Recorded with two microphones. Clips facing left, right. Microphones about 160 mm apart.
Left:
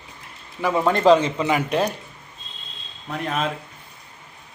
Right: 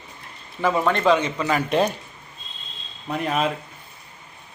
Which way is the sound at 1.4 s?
15° left (ahead or behind).